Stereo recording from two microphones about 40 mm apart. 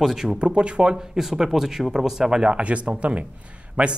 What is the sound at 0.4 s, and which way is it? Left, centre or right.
Speech, right.